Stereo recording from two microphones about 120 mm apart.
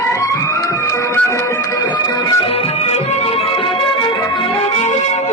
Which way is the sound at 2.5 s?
60° left (ahead or behind).